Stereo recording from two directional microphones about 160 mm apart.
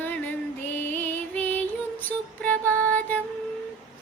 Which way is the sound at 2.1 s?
10° left (ahead or behind).